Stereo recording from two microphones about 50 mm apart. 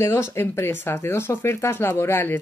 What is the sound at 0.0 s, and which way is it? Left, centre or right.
Speech, left.